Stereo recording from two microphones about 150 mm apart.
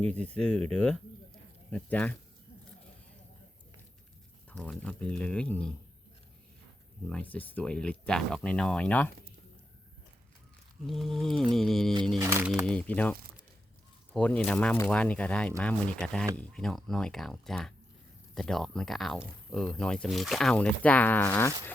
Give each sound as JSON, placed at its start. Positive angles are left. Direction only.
{"t": 0.2, "sound": "speech", "side_deg": 10}
{"t": 4.4, "sound": "speech", "side_deg": 5}
{"t": 7.1, "sound": "speech", "side_deg": 10}
{"t": 10.8, "sound": "speech", "side_deg": 0}
{"t": 12.2, "sound": "speech", "side_deg": -20}
{"t": 12.6, "sound": "speech", "side_deg": 10}